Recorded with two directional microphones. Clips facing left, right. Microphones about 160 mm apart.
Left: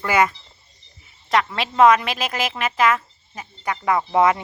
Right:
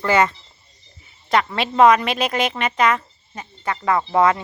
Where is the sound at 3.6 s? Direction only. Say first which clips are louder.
Right 1 dB; 15° left (ahead or behind).